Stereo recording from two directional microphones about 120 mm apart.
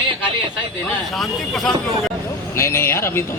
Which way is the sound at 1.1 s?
Centre (ahead or behind).